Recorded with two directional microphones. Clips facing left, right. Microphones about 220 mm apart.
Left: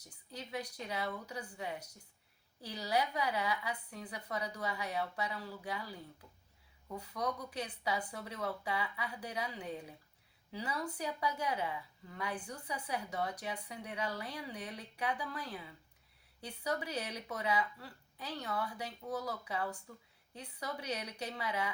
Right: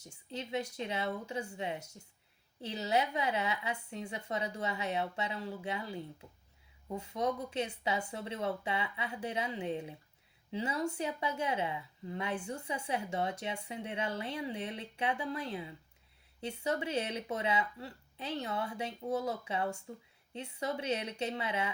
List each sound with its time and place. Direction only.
0.0 s a woman's voice: 25° right (ahead or behind)